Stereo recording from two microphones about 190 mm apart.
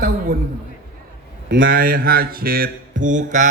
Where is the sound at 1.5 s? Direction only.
75° right (ahead or behind).